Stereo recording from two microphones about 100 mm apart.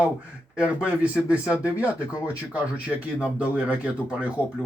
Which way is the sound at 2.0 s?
35° left (ahead or behind).